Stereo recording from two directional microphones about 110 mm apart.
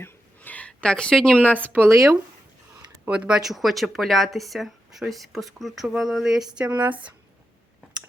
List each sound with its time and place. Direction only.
0.0 s a sound: 15° left (ahead or behind)
1.6 s speech: 20° right (ahead or behind)
3.1 s speech: 10° right (ahead or behind)
6.7 s speech: 15° right (ahead or behind)